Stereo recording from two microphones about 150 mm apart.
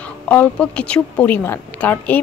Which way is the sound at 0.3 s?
10° left (ahead or behind).